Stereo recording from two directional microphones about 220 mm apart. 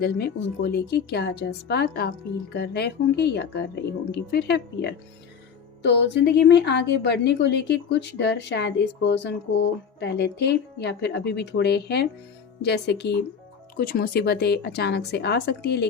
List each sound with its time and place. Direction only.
0.0 s a woman's voice: 45° left (ahead or behind)